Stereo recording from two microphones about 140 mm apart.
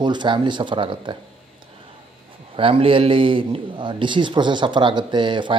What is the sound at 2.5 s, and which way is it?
A man's voice, 40° right (ahead or behind).